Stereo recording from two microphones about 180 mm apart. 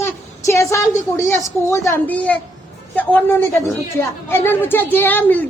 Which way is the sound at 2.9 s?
10° left (ahead or behind).